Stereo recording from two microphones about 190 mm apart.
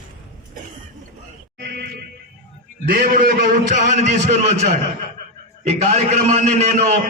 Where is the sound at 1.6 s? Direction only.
60° right (ahead or behind).